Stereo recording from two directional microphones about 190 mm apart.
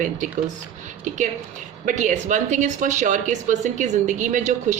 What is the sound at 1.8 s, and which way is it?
A woman's voice, 40° right (ahead or behind).